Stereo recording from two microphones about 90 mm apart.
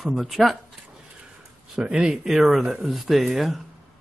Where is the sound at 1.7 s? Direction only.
10° right (ahead or behind).